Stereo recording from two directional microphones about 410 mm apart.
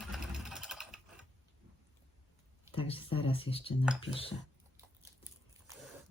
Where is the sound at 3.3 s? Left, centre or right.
Centre.